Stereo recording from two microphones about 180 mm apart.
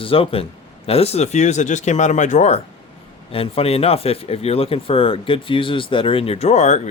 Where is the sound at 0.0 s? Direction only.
30° left (ahead or behind).